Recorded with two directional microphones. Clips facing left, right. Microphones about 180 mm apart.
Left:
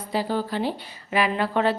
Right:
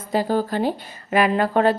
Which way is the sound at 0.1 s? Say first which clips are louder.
Right 5 dB; 45° right (ahead or behind).